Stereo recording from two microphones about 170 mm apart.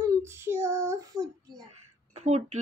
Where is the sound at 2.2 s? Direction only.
40° right (ahead or behind).